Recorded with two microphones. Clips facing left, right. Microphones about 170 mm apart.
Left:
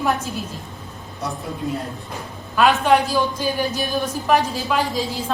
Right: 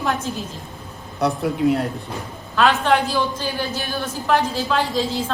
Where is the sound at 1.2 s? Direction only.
70° right (ahead or behind).